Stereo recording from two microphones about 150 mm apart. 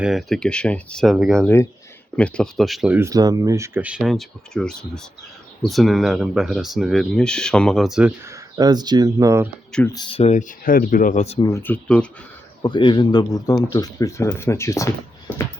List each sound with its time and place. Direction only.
0.0 s speech: centre (ahead or behind)
3.0 s speech: 25° right (ahead or behind); by 8.1 s 5° right (ahead or behind)
8.2 s speech: 25° right (ahead or behind)
9.8 s speech: 25° left (ahead or behind); by 10.4 s 45° left (ahead or behind)
10.6 s speech: 70° left (ahead or behind); by 11.3 s 55° left (ahead or behind)
11.5 s speech: 10° left (ahead or behind)
12.6 s speech: 30° left (ahead or behind)
15.3 s a sound: 10° left (ahead or behind)